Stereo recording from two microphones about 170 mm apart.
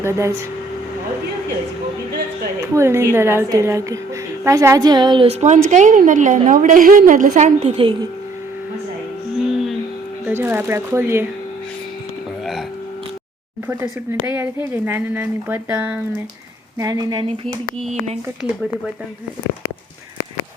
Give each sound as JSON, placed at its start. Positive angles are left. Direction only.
{"t": 0.0, "sound": "speech", "side_deg": -15}
{"t": 2.7, "sound": "a woman's voice", "side_deg": -15}
{"t": 9.3, "sound": "music", "side_deg": 0}
{"t": 10.2, "sound": "speech", "side_deg": -10}
{"t": 14.1, "sound": "speech", "side_deg": -10}
{"t": 16.7, "sound": "speech", "side_deg": -20}
{"t": 17.8, "sound": "speech", "side_deg": -40}